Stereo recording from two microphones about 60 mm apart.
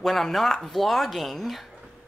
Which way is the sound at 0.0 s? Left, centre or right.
Centre.